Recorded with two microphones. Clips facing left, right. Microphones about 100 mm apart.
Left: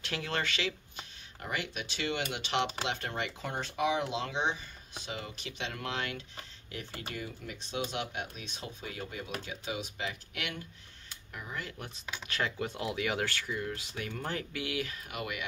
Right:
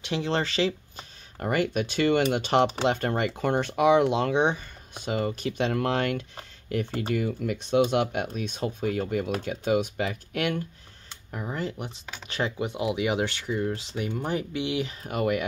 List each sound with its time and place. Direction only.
0.0 s speech: 25° right (ahead or behind)
1.4 s speech: 50° right (ahead or behind)
11.3 s speech: 35° right (ahead or behind)
12.3 s speech: 20° right (ahead or behind)
15.0 s speech: 40° right (ahead or behind)